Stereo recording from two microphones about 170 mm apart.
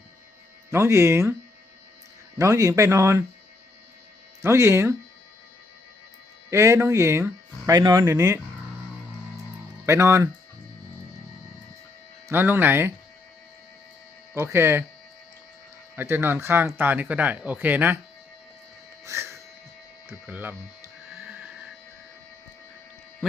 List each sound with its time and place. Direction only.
0.7 s speech: 15° right (ahead or behind)
2.4 s speech: 20° right (ahead or behind)
4.4 s speech: 15° right (ahead or behind)
6.5 s speech: 15° right (ahead or behind)
9.8 s speech: 15° right (ahead or behind)
12.3 s speech: 15° right (ahead or behind)
14.3 s speech: 15° right (ahead or behind)
16.0 s speech: 15° right (ahead or behind)
19.0 s a sound: 15° right (ahead or behind)